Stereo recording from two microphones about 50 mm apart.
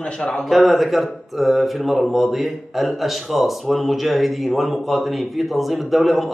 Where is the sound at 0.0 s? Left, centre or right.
Centre.